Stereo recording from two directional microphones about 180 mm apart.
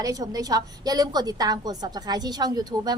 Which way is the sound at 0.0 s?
20° right (ahead or behind).